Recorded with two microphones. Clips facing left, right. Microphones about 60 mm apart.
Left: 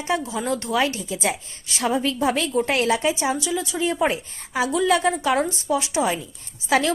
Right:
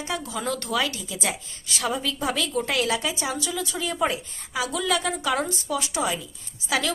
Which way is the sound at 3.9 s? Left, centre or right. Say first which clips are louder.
Left 3 dB; left.